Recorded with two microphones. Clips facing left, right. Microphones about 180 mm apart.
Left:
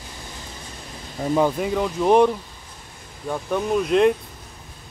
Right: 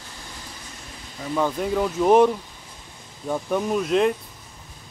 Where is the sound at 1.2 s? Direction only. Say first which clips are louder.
Left 7 dB; 50° left (ahead or behind).